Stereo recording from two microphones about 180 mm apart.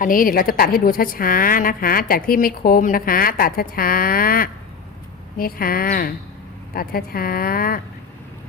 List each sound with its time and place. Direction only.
0.0 s a woman's voice: 50° left (ahead or behind)